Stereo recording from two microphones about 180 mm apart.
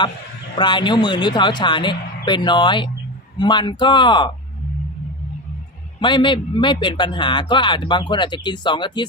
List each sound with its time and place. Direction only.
0.5 s a man's voice: 25° left (ahead or behind)
6.0 s a man's voice: 25° left (ahead or behind)